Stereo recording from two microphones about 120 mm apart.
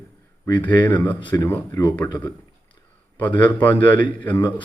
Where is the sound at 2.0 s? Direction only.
35° left (ahead or behind).